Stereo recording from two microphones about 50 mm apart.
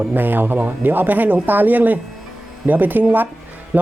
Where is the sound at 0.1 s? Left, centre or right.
Right.